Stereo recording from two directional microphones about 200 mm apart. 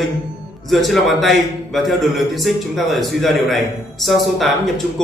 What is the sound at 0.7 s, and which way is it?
A man's voice, centre (ahead or behind).